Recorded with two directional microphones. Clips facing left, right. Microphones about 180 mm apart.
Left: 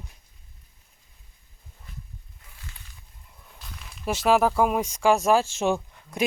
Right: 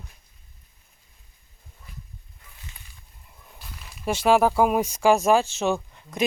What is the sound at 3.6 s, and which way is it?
Speech, 5° right (ahead or behind).